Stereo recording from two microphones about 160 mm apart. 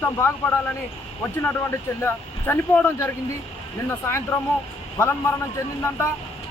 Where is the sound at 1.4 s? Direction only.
15° left (ahead or behind).